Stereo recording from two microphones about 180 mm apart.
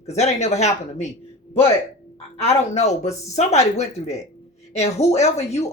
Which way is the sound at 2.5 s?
40° left (ahead or behind).